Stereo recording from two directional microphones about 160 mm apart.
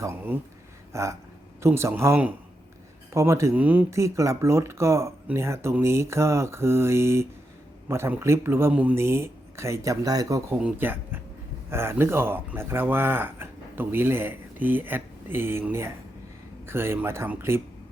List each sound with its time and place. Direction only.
0.9 s speech: 20° right (ahead or behind)
10.6 s speech: 10° right (ahead or behind)